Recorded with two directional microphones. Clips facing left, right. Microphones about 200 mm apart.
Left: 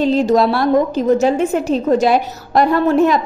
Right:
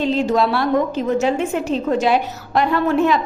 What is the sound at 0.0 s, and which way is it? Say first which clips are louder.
A woman's voice: left 4 dB; 40° left (ahead or behind).